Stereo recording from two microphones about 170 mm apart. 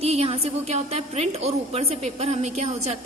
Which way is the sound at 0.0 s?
35° right (ahead or behind).